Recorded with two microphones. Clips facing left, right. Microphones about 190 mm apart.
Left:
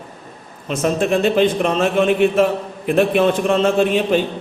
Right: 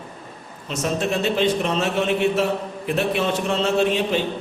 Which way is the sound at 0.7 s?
55° left (ahead or behind).